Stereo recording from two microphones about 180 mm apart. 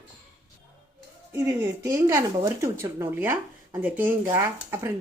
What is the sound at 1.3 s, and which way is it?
Speech, 15° right (ahead or behind).